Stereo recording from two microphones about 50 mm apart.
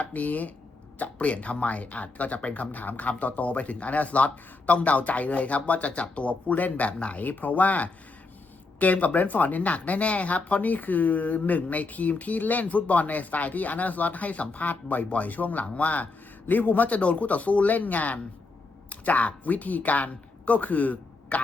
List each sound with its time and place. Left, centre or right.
0.0 s speech: left